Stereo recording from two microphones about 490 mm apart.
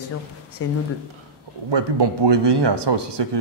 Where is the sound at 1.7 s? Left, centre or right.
Right.